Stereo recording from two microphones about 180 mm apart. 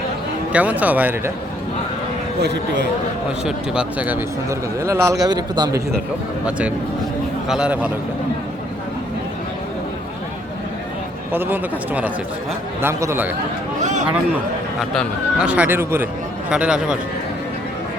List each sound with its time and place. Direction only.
0.5 s a man's voice: 10° right (ahead or behind)
2.4 s speech: 70° right (ahead or behind)
3.4 s a man's voice: 5° right (ahead or behind); by 5.8 s 25° right (ahead or behind)
6.4 s a man's voice: 5° right (ahead or behind)
11.3 s a man's voice: 10° right (ahead or behind)
14.8 s a man's voice: 5° right (ahead or behind)